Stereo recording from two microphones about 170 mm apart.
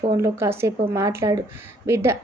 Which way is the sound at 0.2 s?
15° right (ahead or behind).